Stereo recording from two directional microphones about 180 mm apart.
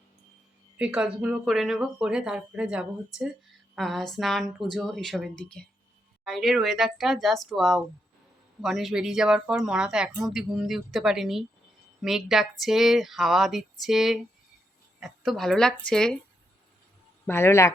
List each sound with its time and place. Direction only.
0.8 s speech: 5° right (ahead or behind)
17.2 s speech: 15° left (ahead or behind)